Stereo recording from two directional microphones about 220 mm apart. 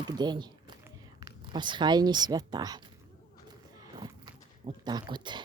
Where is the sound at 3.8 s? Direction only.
20° right (ahead or behind).